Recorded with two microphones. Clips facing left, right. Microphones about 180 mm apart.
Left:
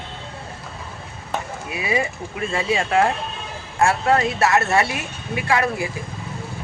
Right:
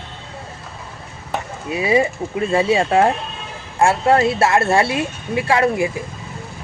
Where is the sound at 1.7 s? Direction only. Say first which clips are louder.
Right 7 dB; 30° right (ahead or behind).